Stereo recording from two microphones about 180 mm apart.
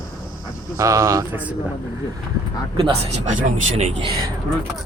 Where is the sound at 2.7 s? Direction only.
35° right (ahead or behind).